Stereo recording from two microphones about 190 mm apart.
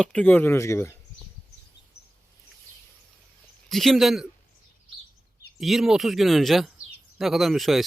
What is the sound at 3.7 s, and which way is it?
Speech, centre (ahead or behind).